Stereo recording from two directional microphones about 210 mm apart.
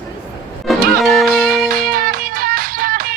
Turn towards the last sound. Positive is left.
turn(degrees=-45)  # may be behind; listen again after turning